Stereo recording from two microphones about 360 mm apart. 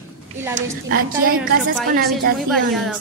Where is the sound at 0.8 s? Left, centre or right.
Right.